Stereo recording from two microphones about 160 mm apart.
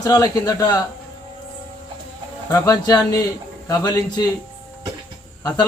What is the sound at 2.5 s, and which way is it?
A man's voice, 25° left (ahead or behind).